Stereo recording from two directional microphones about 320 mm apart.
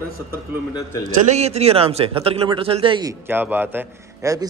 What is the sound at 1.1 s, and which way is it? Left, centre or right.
Speech, centre.